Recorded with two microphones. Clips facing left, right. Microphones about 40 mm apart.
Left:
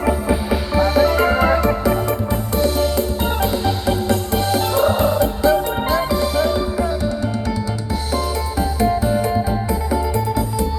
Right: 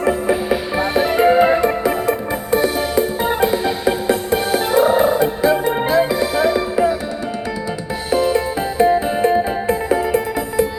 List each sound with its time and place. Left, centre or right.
0.1 s music: centre
0.8 s music: centre
8.1 s music: right